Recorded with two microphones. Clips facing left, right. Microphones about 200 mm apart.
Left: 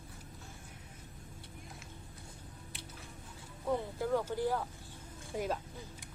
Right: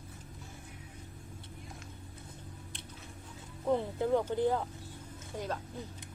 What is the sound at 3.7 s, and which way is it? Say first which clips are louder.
Speech: right 4 dB; 20° right (ahead or behind).